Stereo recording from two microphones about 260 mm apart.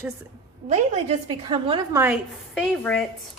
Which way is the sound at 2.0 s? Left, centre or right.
Centre.